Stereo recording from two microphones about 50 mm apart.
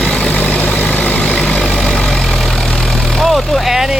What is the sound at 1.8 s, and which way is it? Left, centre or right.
Vehicle, centre.